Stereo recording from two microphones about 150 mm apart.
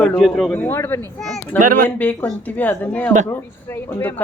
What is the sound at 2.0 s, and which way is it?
Speech, 10° left (ahead or behind).